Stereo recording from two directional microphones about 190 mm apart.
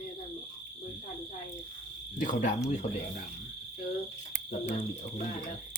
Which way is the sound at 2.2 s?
40° left (ahead or behind).